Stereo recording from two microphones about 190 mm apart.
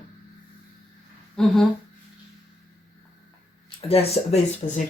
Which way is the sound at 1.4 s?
5° left (ahead or behind).